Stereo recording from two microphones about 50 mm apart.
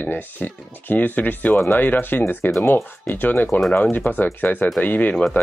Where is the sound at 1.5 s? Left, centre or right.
Left.